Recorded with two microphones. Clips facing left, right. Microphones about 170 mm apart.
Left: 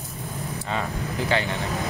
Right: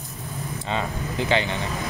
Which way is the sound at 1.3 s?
20° right (ahead or behind).